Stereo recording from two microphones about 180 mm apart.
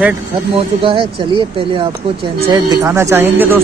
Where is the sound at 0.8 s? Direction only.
30° right (ahead or behind).